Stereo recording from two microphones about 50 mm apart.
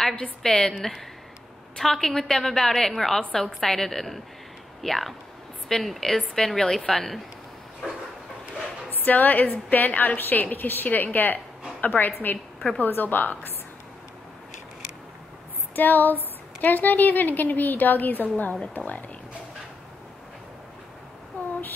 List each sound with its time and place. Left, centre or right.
0.4 s a woman's voice: centre
1.8 s a woman's voice: centre
9.0 s a woman's voice: left
15.7 s a woman's voice: left
21.4 s a sound: left